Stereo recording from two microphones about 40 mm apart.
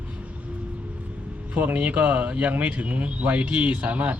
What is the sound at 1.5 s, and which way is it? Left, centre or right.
Speech, right.